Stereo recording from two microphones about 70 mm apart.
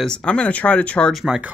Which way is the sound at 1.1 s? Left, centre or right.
Centre.